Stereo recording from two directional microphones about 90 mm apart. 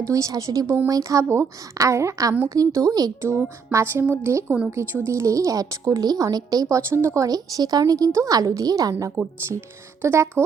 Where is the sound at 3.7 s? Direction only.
30° right (ahead or behind).